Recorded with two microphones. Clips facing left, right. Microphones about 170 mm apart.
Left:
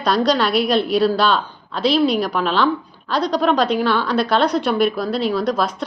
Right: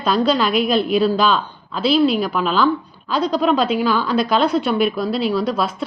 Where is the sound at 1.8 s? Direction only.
5° right (ahead or behind).